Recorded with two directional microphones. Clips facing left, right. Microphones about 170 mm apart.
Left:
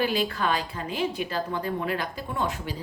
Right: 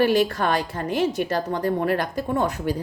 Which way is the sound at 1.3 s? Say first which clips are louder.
Right 6 dB; 45° right (ahead or behind).